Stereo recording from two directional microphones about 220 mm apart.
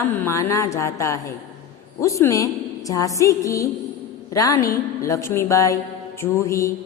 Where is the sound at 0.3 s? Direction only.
15° left (ahead or behind).